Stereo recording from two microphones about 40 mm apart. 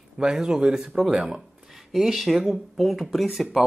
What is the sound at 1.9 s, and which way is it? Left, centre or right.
Speech, centre.